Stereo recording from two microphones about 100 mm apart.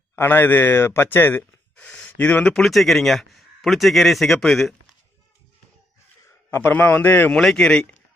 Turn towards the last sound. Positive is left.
turn(degrees=10)  # may be behind; listen again after turning